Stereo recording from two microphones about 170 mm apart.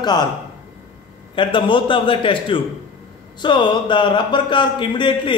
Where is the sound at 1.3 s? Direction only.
30° left (ahead or behind).